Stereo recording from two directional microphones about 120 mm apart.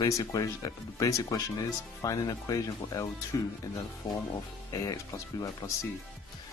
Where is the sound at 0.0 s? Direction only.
35° left (ahead or behind).